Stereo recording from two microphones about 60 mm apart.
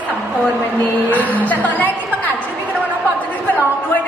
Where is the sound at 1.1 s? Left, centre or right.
Left.